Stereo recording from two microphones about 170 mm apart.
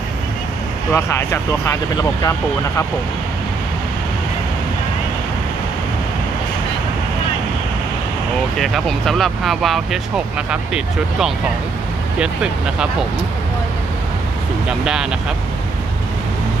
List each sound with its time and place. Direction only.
0.9 s speech: 15° left (ahead or behind)
8.5 s speech: centre (ahead or behind)
14.9 s speech: 5° right (ahead or behind)